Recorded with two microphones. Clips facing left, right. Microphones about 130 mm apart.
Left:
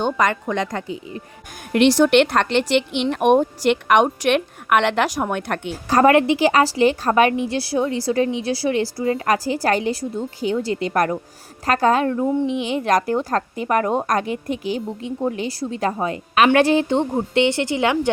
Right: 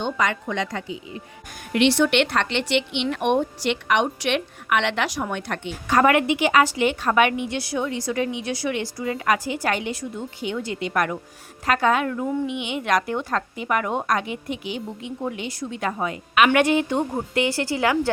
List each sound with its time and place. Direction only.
0.0 s a woman's voice: 50° left (ahead or behind)
5.9 s a woman's voice: 35° left (ahead or behind)
17.1 s speech: 20° left (ahead or behind)